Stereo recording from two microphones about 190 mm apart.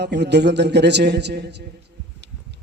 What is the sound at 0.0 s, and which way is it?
A man's voice, 65° right (ahead or behind).